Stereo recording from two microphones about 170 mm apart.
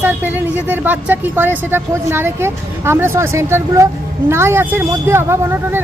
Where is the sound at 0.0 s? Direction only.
10° right (ahead or behind).